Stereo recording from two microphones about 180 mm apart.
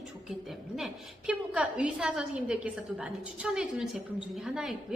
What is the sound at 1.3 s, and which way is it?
A woman's voice, 5° right (ahead or behind).